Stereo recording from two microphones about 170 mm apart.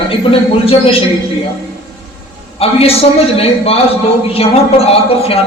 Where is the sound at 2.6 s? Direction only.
35° left (ahead or behind).